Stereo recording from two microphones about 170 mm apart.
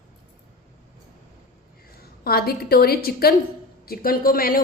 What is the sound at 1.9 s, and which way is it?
A woman's voice, 65° left (ahead or behind).